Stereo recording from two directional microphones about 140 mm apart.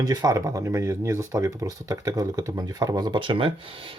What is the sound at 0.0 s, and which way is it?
Speech, 25° right (ahead or behind).